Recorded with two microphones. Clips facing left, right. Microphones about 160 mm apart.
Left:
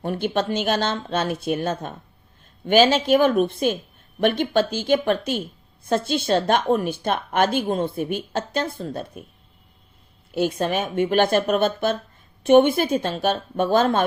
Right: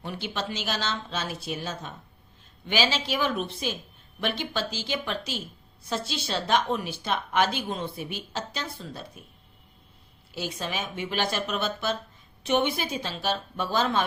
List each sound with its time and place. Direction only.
0.0 s a woman's voice: 50° left (ahead or behind)
10.3 s a woman's voice: 55° left (ahead or behind)